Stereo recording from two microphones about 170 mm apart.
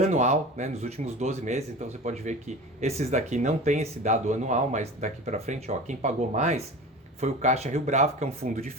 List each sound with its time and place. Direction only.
0.0 s speech: 40° right (ahead or behind)